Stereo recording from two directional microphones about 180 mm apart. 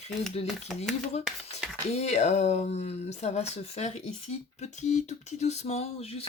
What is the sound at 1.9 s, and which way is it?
Speech, 35° left (ahead or behind).